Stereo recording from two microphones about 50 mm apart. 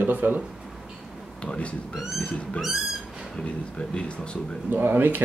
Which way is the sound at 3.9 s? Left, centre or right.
Centre.